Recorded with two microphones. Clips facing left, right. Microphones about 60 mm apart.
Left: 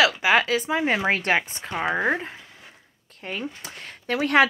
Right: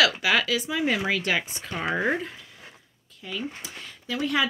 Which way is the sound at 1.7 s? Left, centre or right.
Centre.